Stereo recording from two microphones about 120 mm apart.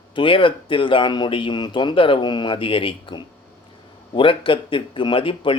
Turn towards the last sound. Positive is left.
turn(degrees=50)  # may be behind; listen again after turning